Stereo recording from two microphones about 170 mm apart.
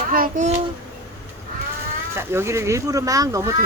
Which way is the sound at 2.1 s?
15° right (ahead or behind).